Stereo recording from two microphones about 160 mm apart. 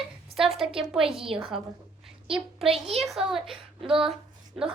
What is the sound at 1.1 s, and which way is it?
Speech, 35° right (ahead or behind).